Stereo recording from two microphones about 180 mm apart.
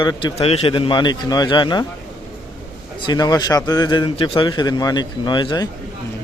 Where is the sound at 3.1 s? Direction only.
20° left (ahead or behind).